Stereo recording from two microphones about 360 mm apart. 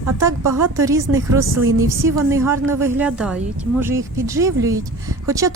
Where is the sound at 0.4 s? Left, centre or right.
Right.